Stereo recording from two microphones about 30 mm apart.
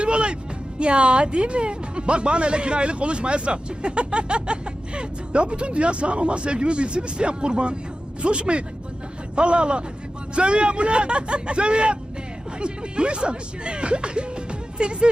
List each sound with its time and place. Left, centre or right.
0.0 s music: right
0.8 s speech: right